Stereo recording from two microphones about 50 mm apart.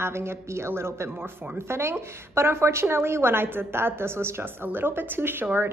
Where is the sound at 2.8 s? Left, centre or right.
Right.